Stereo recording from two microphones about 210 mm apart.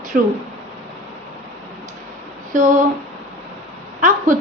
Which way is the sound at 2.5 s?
35° right (ahead or behind).